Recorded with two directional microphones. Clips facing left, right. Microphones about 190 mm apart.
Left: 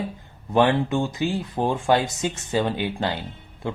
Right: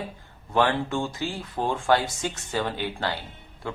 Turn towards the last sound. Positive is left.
turn(degrees=20)  # may be behind; listen again after turning